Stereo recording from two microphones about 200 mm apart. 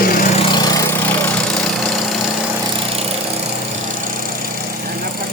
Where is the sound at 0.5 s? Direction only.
20° left (ahead or behind).